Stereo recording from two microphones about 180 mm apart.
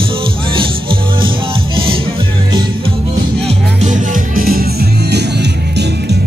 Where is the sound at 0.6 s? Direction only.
30° right (ahead or behind).